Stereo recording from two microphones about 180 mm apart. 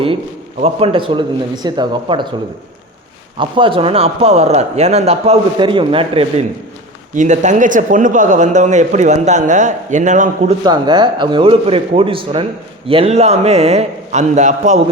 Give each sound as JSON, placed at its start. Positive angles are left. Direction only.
{"t": 0.6, "sound": "speech", "side_deg": -30}
{"t": 3.3, "sound": "speech", "side_deg": -30}
{"t": 7.2, "sound": "a man's voice", "side_deg": -45}
{"t": 10.6, "sound": "speech", "side_deg": -25}